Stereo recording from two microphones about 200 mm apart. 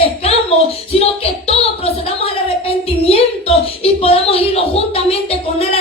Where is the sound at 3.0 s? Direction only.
30° left (ahead or behind).